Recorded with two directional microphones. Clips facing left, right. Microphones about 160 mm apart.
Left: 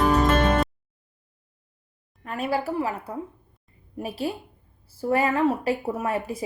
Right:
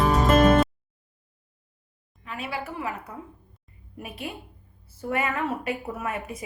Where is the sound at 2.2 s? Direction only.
45° left (ahead or behind).